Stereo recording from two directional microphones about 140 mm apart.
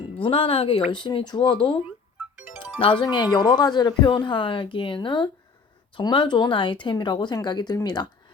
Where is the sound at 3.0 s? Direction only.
30° left (ahead or behind).